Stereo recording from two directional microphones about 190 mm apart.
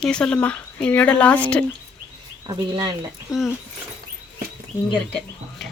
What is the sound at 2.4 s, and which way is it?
Speech, 25° right (ahead or behind).